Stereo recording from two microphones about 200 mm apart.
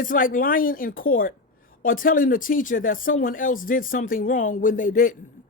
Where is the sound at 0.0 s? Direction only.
40° left (ahead or behind).